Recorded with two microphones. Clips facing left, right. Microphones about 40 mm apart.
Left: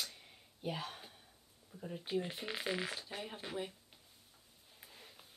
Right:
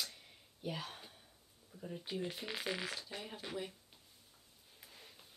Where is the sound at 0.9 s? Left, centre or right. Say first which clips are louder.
Left 2 dB; centre.